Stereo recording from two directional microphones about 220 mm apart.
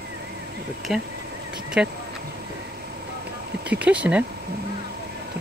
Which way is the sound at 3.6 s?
5° right (ahead or behind).